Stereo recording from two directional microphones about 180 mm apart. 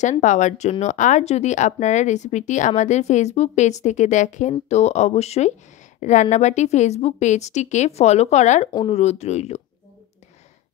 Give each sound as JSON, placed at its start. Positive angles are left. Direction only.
{"t": 0.0, "sound": "speech", "side_deg": 40}